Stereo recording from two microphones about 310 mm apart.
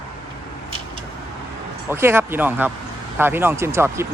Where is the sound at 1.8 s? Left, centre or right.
Centre.